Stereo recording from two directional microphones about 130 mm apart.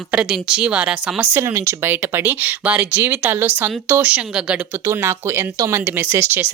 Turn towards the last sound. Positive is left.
turn(degrees=-20)  # may be behind; listen again after turning